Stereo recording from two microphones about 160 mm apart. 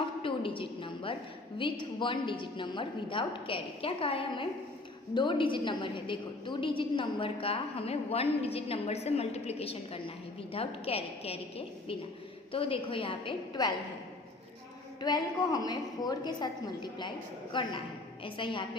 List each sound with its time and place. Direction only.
0.2 s a sound: 35° left (ahead or behind)
1.8 s a woman's voice: 30° left (ahead or behind)
15.0 s a woman's voice: 25° left (ahead or behind)